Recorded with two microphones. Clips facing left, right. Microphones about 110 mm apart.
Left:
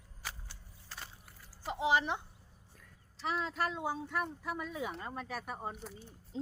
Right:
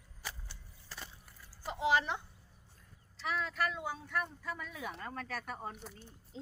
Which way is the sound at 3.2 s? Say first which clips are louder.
Left 1 dB; 30° left (ahead or behind).